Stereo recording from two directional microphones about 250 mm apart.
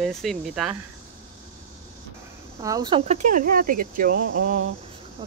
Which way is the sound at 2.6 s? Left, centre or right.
Centre.